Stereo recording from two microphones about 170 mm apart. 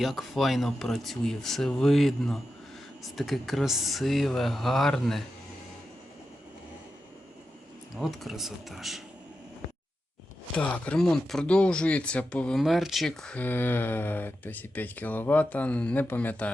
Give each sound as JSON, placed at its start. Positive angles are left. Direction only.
{"t": 0.0, "sound": "speech", "side_deg": 0}
{"t": 7.9, "sound": "speech", "side_deg": 0}
{"t": 10.6, "sound": "speech", "side_deg": 5}